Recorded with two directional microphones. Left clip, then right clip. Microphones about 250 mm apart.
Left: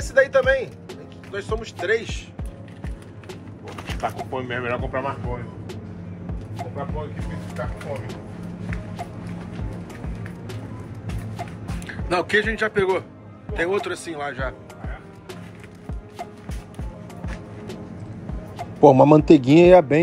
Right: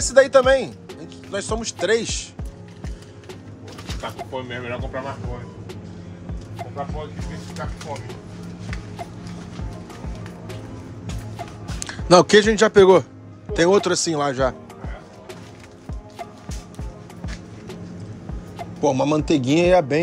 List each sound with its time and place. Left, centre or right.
0.1 s speech: right
3.8 s speech: centre
11.8 s speech: right
18.8 s a man's voice: centre